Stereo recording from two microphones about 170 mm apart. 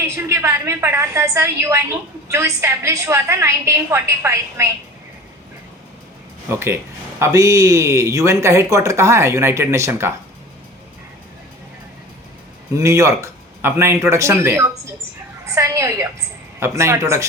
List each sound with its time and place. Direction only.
0.0 s a woman's voice: 15° right (ahead or behind)
6.5 s a woman's voice: 15° right (ahead or behind)
12.7 s a woman's voice: 20° right (ahead or behind)